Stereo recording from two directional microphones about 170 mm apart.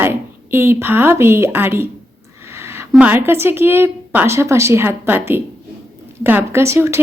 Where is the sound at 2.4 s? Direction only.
15° right (ahead or behind).